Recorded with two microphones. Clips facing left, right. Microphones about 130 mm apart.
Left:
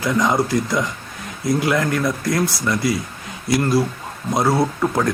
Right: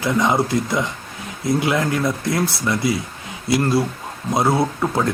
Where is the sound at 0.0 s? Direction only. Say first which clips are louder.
Even; 20° right (ahead or behind).